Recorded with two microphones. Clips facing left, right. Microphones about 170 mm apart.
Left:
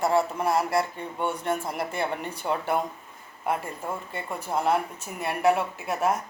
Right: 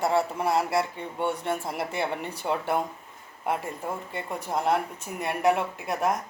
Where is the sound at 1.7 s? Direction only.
25° right (ahead or behind).